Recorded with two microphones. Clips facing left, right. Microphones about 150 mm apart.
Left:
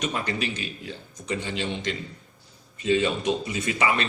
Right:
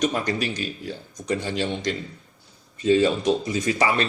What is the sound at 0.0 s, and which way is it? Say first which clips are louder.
Speech: right 4 dB; 40° right (ahead or behind).